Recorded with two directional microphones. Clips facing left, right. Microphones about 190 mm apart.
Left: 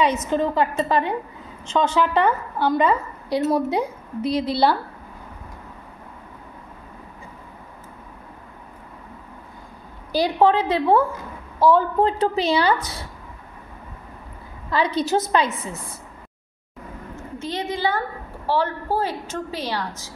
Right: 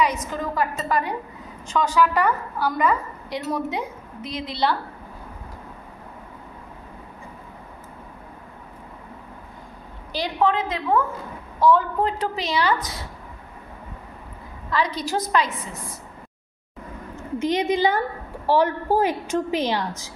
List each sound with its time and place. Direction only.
0.0 s a woman's voice: 25° left (ahead or behind)
10.2 s a woman's voice: 35° left (ahead or behind)
14.7 s a woman's voice: 30° left (ahead or behind)
17.4 s a woman's voice: 15° right (ahead or behind)